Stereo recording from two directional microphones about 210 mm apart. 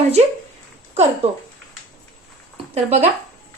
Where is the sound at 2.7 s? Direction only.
30° right (ahead or behind).